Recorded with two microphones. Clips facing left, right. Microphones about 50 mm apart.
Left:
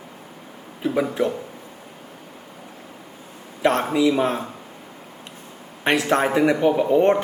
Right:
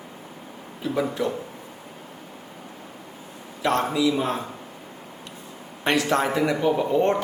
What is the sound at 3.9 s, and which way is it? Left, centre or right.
Speech, left.